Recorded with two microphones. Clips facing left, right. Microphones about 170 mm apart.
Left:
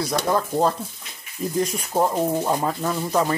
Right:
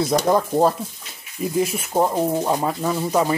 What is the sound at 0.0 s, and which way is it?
Speech, 20° right (ahead or behind).